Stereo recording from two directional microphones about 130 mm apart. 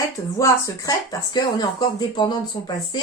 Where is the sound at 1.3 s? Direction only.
30° left (ahead or behind).